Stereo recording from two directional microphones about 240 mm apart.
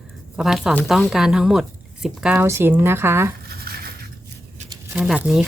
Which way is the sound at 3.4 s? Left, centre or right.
Right.